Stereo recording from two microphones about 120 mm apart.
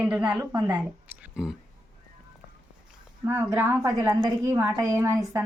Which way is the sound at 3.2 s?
20° right (ahead or behind).